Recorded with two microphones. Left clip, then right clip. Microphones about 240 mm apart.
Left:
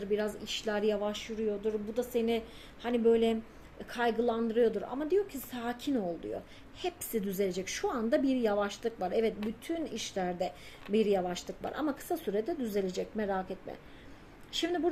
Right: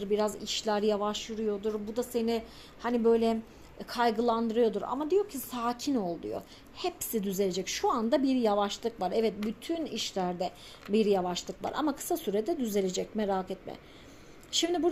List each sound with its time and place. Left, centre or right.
0.0 s a woman's voice: right